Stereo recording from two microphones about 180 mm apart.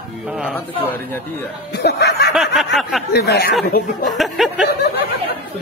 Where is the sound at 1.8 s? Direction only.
65° left (ahead or behind).